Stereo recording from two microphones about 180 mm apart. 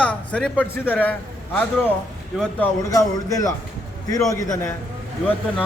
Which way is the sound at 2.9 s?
20° left (ahead or behind).